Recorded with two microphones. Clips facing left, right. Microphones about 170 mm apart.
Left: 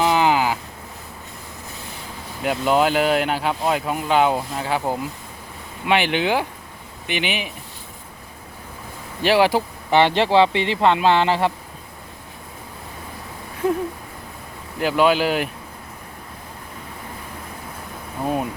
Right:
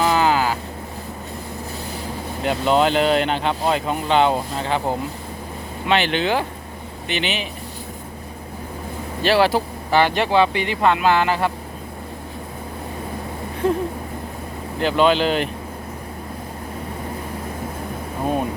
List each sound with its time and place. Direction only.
0.0 s boat: 15° left (ahead or behind)
2.4 s speech: 10° left (ahead or behind)
9.2 s speech: 15° left (ahead or behind)
13.6 s speech: 5° left (ahead or behind)